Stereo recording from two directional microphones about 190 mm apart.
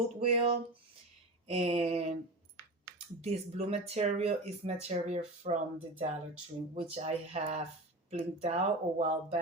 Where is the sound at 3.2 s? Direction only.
35° right (ahead or behind).